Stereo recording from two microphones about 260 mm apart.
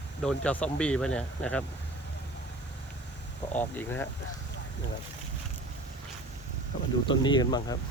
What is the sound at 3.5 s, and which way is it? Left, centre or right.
Speech, centre.